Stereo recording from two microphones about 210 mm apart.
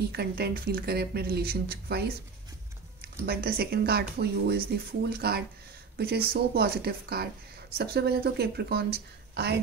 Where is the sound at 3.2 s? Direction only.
45° right (ahead or behind).